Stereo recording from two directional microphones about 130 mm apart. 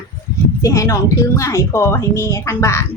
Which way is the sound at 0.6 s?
25° left (ahead or behind).